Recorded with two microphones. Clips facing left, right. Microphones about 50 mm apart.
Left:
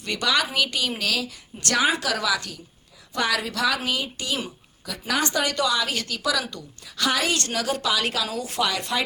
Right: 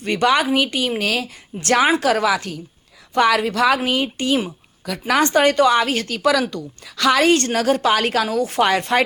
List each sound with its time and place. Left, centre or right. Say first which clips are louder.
0.0 s a woman's voice: right 7 dB; right
4.9 s a woman's voice: right 8 dB; right
6.5 s a woman's voice: right 9 dB; right
7.3 s a woman's voice: right 8 dB; right